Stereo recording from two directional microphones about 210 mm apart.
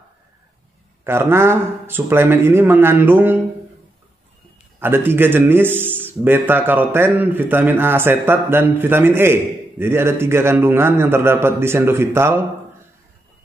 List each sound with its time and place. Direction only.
1.0 s a man's voice: 10° right (ahead or behind)
4.7 s a man's voice: 10° right (ahead or behind)